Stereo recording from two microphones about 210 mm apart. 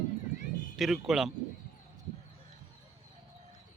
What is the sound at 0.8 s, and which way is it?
Speech, centre (ahead or behind).